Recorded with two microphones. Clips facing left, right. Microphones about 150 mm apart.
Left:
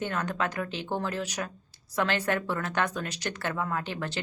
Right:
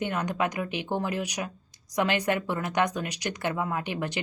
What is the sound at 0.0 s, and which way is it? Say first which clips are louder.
A woman's voice: right 2 dB; 15° right (ahead or behind).